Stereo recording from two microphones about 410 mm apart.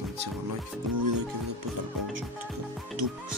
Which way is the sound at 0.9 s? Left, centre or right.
Right.